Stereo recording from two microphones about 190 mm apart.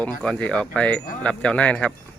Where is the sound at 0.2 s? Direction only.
5° left (ahead or behind).